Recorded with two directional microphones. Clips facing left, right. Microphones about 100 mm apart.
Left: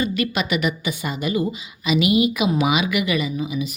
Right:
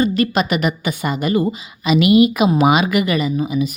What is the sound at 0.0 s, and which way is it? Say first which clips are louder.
Speech: right 6 dB; 35° right (ahead or behind).